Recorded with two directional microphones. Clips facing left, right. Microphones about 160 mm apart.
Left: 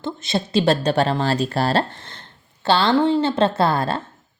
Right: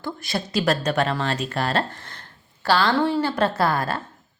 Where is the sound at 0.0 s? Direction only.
25° left (ahead or behind).